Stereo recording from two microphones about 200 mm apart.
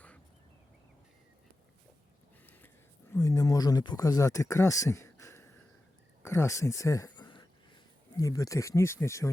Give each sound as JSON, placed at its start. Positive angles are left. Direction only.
{"t": 3.1, "sound": "speech", "side_deg": 15}